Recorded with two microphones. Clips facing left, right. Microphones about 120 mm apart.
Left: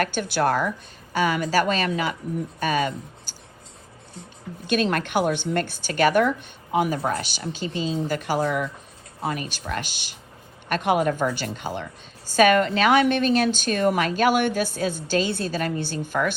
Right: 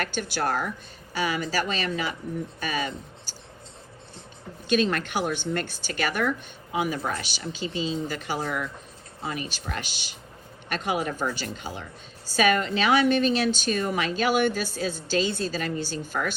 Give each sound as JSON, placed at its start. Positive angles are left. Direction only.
{"t": 0.0, "sound": "a woman's voice", "side_deg": 50}
{"t": 4.6, "sound": "a woman's voice", "side_deg": 55}